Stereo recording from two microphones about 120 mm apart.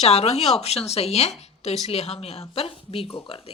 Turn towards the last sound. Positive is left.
turn(degrees=50)  # may be behind; listen again after turning